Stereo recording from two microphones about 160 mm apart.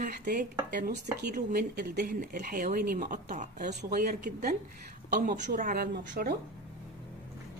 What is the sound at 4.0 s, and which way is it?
Speech, 70° right (ahead or behind).